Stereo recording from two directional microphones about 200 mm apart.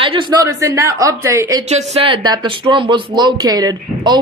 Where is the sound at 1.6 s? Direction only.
35° right (ahead or behind).